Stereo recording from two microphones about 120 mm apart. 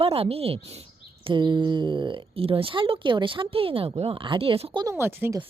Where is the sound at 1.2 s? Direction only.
40° right (ahead or behind).